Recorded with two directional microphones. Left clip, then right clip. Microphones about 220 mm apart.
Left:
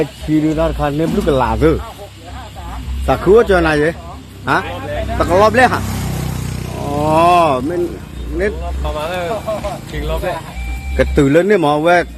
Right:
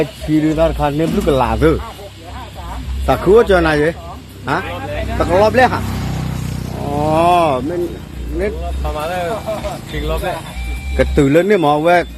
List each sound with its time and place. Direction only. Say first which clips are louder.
0.0 s speech: even; 5° left (ahead or behind)
3.1 s speech: even; 5° left (ahead or behind)
5.8 s vehicle: left 1 dB; 40° left (ahead or behind)
7.0 s speech: left 2 dB; 20° left (ahead or behind)